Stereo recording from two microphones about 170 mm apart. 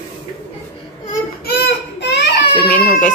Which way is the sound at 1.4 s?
70° left (ahead or behind).